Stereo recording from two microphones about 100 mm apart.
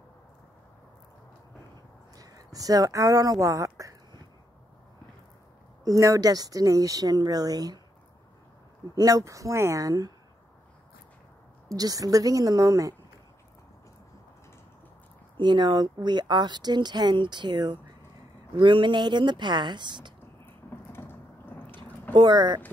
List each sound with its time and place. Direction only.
2.1 s speech: 35° right (ahead or behind)
5.9 s speech: 35° right (ahead or behind)
8.9 s speech: 40° right (ahead or behind)
11.7 s speech: 40° right (ahead or behind)
15.3 s speech: 50° right (ahead or behind)
20.7 s a sound: 20° left (ahead or behind)
22.1 s speech: 50° right (ahead or behind)